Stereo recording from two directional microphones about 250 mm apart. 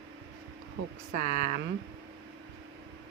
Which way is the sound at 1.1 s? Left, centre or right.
Right.